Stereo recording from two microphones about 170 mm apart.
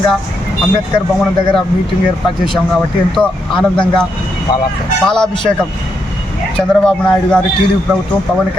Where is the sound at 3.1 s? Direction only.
5° left (ahead or behind).